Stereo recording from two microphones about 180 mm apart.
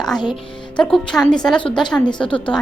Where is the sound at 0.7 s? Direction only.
5° left (ahead or behind).